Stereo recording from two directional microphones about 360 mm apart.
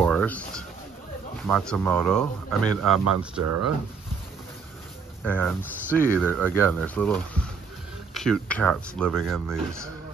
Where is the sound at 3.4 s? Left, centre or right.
Right.